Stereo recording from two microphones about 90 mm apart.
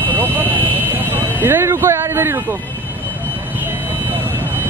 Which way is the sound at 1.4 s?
25° right (ahead or behind).